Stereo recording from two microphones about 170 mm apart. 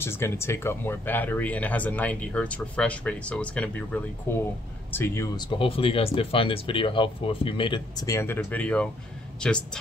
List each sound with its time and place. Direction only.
0.0 s speech: 15° left (ahead or behind)
5.6 s speech: 35° left (ahead or behind); by 9.6 s 5° left (ahead or behind)